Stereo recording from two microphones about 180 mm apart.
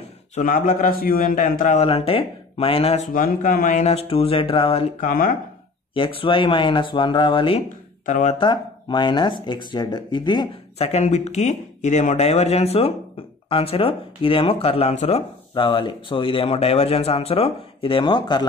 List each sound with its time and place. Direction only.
0.4 s speech: 45° left (ahead or behind)
3.1 s speech: 50° left (ahead or behind); by 4.9 s 30° left (ahead or behind)
5.0 s speech: 50° left (ahead or behind)
5.9 s speech: 30° left (ahead or behind)
8.0 s speech: 40° left (ahead or behind)
8.4 s speech: 25° left (ahead or behind)